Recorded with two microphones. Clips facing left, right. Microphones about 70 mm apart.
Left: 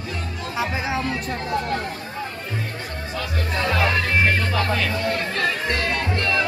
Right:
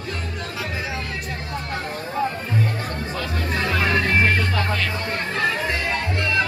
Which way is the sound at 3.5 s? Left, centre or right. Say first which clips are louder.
Even; centre.